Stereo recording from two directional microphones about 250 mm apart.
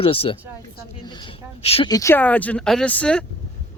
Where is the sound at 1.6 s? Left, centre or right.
Left.